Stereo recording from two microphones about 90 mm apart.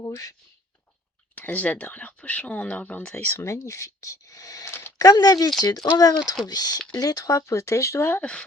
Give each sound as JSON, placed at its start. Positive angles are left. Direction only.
{"t": 0.0, "sound": "speech", "side_deg": 40}
{"t": 1.4, "sound": "speech", "side_deg": 15}
{"t": 3.4, "sound": "speech", "side_deg": 35}
{"t": 8.2, "sound": "speech", "side_deg": 10}